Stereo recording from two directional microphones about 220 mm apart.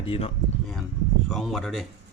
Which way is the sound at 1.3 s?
Centre (ahead or behind).